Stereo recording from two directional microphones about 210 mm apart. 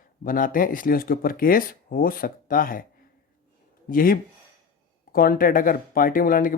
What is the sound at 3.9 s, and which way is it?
Speech, 40° left (ahead or behind).